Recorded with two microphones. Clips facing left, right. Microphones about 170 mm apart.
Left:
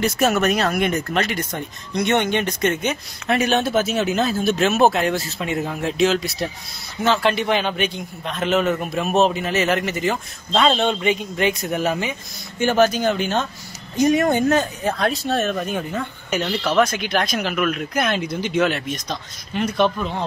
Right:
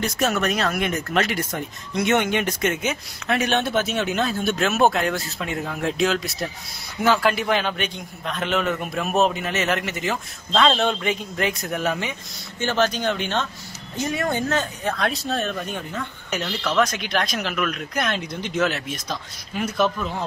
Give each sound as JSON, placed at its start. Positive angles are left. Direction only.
{"t": 0.0, "sound": "speech", "side_deg": 5}
{"t": 4.6, "sound": "speech", "side_deg": 30}
{"t": 4.8, "sound": "speech", "side_deg": 5}
{"t": 5.5, "sound": "speech", "side_deg": 20}
{"t": 5.9, "sound": "speech", "side_deg": 0}
{"t": 15.0, "sound": "speech", "side_deg": 0}